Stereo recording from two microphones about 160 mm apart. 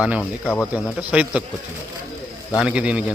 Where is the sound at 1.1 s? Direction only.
5° right (ahead or behind).